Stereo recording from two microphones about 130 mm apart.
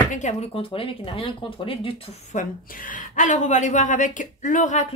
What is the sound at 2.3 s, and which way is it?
A woman's voice, 90° left.